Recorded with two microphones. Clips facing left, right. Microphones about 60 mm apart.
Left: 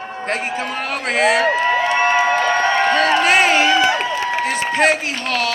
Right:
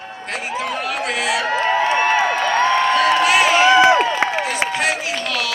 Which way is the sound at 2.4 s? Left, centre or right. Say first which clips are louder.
Even; left.